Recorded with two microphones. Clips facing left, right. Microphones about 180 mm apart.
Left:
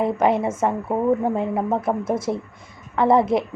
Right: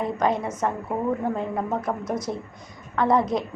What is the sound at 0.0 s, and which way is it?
Speech, 25° left (ahead or behind).